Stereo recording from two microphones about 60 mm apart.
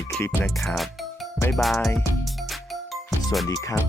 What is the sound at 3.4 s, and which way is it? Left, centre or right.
Music, left.